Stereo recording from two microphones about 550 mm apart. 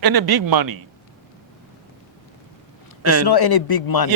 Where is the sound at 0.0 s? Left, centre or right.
Right.